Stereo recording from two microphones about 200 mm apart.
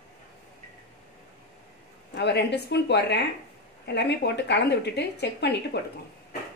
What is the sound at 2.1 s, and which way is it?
Speech, 60° left (ahead or behind).